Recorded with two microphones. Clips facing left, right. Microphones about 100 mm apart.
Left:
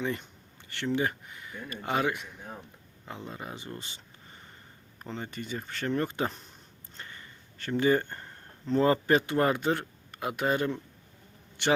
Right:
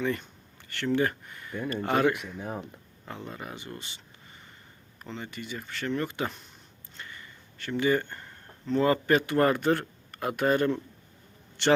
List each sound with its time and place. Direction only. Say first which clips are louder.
0.0 s speech: right 3 dB; 20° left (ahead or behind)
2.4 s speech: right 8 dB; 80° right
3.1 s speech: right 1 dB; 15° left (ahead or behind)